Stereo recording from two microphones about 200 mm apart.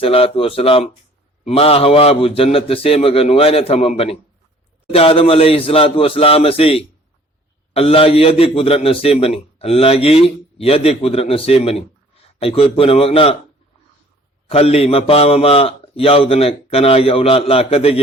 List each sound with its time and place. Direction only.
0.0 s a man's voice: 30° left (ahead or behind)
14.5 s a man's voice: 30° left (ahead or behind)